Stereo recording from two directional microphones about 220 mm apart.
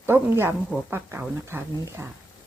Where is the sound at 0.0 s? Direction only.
10° right (ahead or behind).